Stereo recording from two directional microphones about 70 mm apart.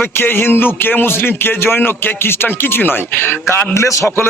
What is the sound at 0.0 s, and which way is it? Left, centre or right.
Speech, left.